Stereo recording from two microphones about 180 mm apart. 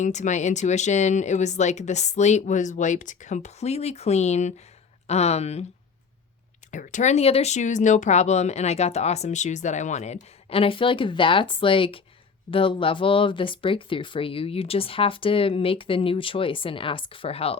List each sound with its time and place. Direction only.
0.0 s speech: 40° left (ahead or behind)
6.7 s speech: 45° left (ahead or behind)